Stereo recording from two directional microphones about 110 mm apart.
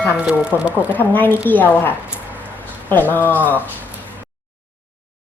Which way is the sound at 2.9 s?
15° left (ahead or behind).